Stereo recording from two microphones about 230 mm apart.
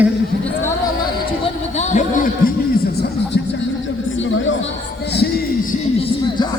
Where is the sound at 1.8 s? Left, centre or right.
Left.